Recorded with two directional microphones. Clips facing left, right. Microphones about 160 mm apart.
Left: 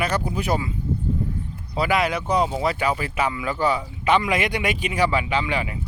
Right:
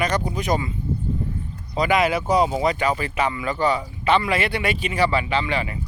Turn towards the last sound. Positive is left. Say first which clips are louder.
# right 1 dB
turn(degrees=10)  # may be behind; listen again after turning